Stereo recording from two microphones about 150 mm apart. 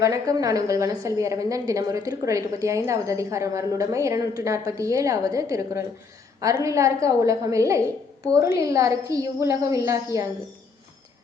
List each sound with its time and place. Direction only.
0.0 s a woman's voice: 25° right (ahead or behind)